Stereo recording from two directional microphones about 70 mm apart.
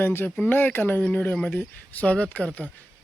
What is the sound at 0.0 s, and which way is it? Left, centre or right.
Speech, left.